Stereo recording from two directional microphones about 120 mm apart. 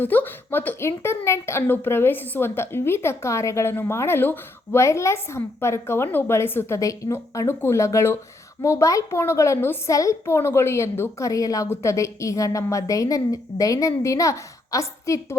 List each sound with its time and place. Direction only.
0.0 s a woman's voice: 15° left (ahead or behind)